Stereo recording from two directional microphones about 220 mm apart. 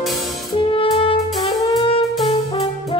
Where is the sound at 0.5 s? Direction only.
25° left (ahead or behind).